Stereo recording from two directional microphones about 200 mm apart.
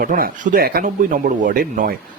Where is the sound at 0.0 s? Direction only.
45° right (ahead or behind).